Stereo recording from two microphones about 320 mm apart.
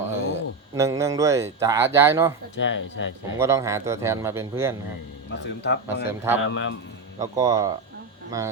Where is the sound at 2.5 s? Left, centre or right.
Left.